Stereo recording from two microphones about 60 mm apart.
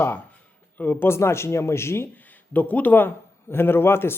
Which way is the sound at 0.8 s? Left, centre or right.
Left.